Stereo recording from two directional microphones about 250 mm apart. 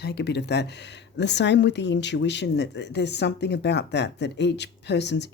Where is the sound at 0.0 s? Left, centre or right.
Left.